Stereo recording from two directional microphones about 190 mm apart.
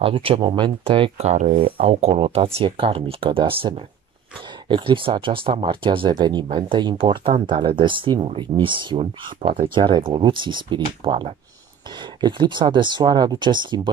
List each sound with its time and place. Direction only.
0.0 s speech: 30° right (ahead or behind)